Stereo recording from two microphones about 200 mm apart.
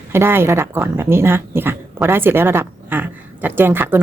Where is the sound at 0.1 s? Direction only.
10° right (ahead or behind).